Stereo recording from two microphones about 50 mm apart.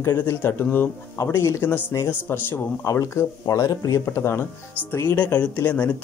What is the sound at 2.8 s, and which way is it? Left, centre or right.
Speech, left.